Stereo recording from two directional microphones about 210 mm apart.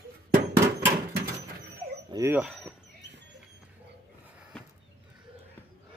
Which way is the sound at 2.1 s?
15° right (ahead or behind).